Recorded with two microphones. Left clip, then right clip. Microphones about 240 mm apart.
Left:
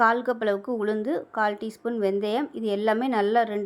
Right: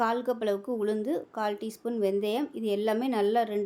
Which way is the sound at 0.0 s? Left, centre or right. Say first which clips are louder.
Left 6 dB; centre.